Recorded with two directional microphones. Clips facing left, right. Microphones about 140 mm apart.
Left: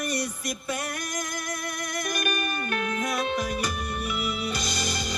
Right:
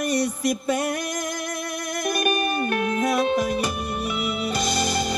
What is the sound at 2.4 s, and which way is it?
Music, 35° right (ahead or behind).